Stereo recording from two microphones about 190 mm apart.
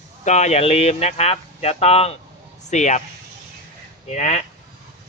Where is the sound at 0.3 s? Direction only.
35° left (ahead or behind).